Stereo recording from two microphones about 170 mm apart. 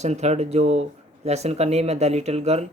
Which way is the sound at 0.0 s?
40° right (ahead or behind).